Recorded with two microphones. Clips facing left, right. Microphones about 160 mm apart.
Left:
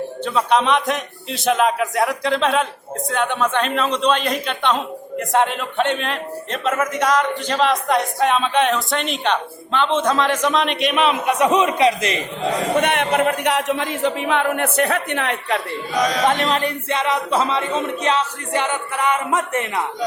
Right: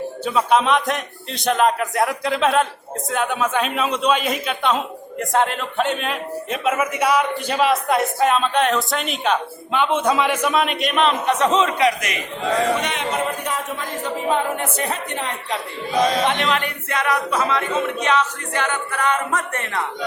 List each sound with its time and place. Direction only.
0.3 s a man's voice: 5° right (ahead or behind); by 12.2 s 25° left (ahead or behind)
12.8 s a man's voice: 60° left (ahead or behind)
16.0 s speech: 30° right (ahead or behind)
16.2 s speech: 45° left (ahead or behind); by 19.8 s 20° left (ahead or behind)